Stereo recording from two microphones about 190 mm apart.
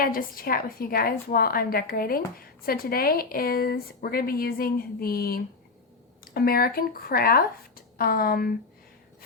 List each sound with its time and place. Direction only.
0.0 s a woman's voice: 50° left (ahead or behind)